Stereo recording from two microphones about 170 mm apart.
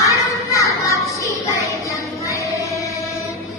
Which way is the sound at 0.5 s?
20° left (ahead or behind).